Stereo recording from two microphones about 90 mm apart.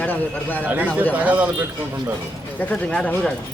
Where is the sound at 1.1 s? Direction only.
15° right (ahead or behind).